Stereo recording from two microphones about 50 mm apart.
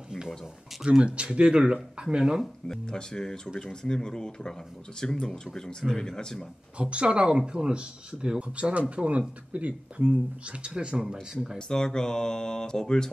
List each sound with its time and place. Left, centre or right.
0.8 s speech: right
2.7 s speech: centre
6.8 s speech: right
11.5 s speech: centre